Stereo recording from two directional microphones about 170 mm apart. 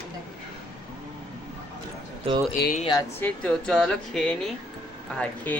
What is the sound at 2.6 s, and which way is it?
Speech, 65° left (ahead or behind).